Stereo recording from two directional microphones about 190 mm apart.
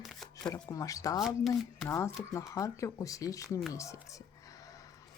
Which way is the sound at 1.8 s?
15° left (ahead or behind).